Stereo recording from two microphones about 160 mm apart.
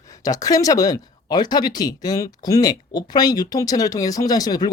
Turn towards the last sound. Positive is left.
turn(degrees=25)  # may be behind; listen again after turning